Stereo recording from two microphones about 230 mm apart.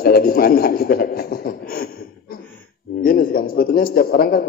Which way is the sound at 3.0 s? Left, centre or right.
Left.